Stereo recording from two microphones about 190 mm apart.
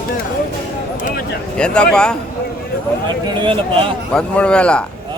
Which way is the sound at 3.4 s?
25° right (ahead or behind).